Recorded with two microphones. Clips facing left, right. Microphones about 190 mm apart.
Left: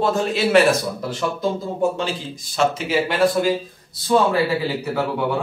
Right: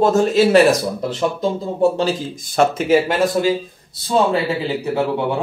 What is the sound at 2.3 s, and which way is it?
Speech, 50° right (ahead or behind).